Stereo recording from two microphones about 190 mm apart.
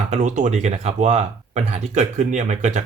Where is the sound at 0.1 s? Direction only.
40° right (ahead or behind).